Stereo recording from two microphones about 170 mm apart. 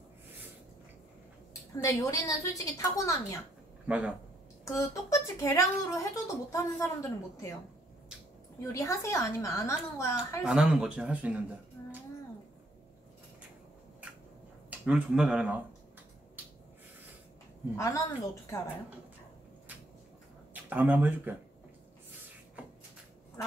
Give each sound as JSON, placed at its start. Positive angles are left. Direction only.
{"t": 1.8, "sound": "a woman's voice", "side_deg": 20}
{"t": 3.8, "sound": "speech", "side_deg": -5}
{"t": 4.6, "sound": "speech", "side_deg": 20}
{"t": 8.7, "sound": "speech", "side_deg": 15}
{"t": 10.4, "sound": "speech", "side_deg": -5}
{"t": 14.7, "sound": "speech", "side_deg": -5}
{"t": 17.7, "sound": "speech", "side_deg": 20}
{"t": 20.5, "sound": "speech", "side_deg": -10}